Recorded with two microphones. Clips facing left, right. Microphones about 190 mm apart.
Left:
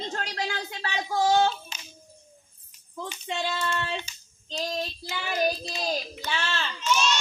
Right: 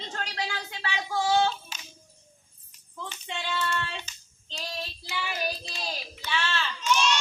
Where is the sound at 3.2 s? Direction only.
40° left (ahead or behind).